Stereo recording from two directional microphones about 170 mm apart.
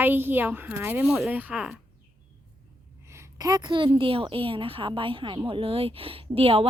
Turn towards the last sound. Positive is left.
turn(degrees=-35)  # may be behind; listen again after turning